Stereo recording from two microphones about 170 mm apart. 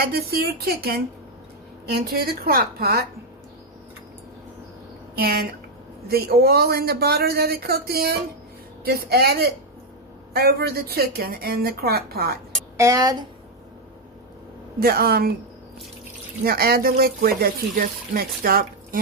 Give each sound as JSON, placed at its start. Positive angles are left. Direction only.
{"t": 0.0, "sound": "a woman's voice", "side_deg": -65}
{"t": 5.1, "sound": "a woman's voice", "side_deg": -65}
{"t": 12.7, "sound": "speech", "side_deg": -20}
{"t": 14.8, "sound": "a woman's voice", "side_deg": -65}
{"t": 16.4, "sound": "a woman's voice", "side_deg": -65}